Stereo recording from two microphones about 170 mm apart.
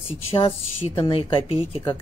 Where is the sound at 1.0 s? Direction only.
30° left (ahead or behind).